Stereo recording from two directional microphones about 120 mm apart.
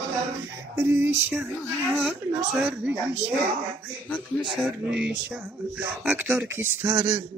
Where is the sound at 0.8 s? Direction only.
20° right (ahead or behind).